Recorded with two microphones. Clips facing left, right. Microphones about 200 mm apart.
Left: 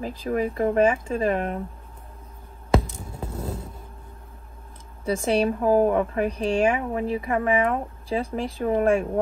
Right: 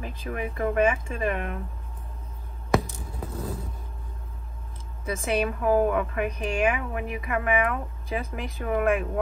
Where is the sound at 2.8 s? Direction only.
25° left (ahead or behind).